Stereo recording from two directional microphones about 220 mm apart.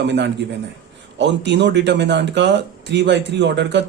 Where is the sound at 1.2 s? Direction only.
55° right (ahead or behind).